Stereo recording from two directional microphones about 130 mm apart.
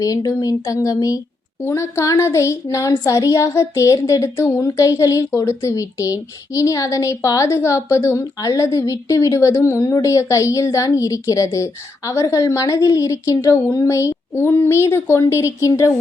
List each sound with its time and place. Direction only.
0.0 s speech: 25° left (ahead or behind)